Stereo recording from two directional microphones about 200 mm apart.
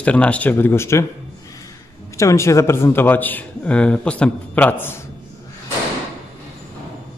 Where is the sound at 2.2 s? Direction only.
15° left (ahead or behind).